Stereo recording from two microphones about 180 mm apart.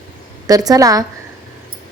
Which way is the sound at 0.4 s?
20° right (ahead or behind).